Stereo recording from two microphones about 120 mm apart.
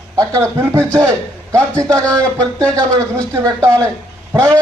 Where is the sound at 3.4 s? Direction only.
25° right (ahead or behind).